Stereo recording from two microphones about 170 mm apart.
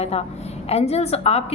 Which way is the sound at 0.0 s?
40° left (ahead or behind).